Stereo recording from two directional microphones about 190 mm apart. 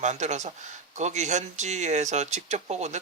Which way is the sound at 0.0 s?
35° right (ahead or behind).